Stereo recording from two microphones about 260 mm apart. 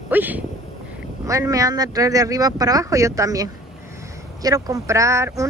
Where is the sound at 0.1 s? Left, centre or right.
Centre.